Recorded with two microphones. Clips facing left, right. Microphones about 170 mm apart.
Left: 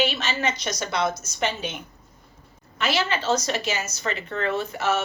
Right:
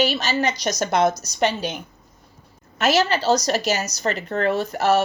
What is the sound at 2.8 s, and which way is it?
Speech, 40° right (ahead or behind).